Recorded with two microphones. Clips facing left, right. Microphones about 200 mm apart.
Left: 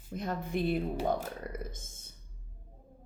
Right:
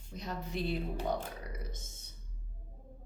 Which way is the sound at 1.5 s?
50° left (ahead or behind).